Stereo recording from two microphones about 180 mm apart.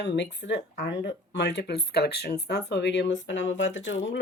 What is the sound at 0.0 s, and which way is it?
Speech, 75° left (ahead or behind).